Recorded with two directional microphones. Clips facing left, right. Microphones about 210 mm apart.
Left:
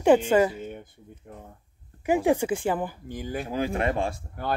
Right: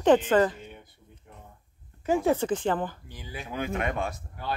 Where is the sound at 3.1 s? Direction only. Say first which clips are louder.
Left 8 dB; 50° left (ahead or behind).